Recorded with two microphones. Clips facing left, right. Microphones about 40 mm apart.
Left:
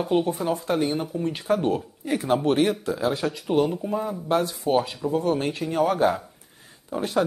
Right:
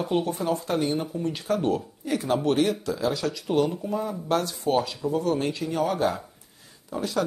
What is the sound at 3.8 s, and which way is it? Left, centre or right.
Speech, centre.